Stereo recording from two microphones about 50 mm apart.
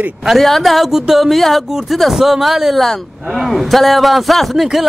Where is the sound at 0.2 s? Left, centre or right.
Centre.